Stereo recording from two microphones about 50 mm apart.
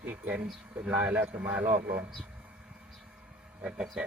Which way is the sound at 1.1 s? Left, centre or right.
Right.